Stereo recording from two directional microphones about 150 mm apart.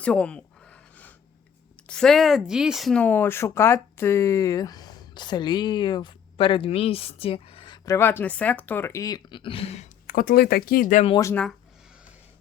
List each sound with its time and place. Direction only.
0.0 s a sound: 5° left (ahead or behind)
1.9 s speech: 5° left (ahead or behind); by 7.9 s 30° left (ahead or behind)
7.9 s speech: 15° left (ahead or behind); by 9.9 s 45° left (ahead or behind)
10.1 s speech: 75° left (ahead or behind)